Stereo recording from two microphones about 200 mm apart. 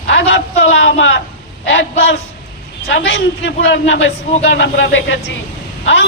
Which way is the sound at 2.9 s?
60° left (ahead or behind).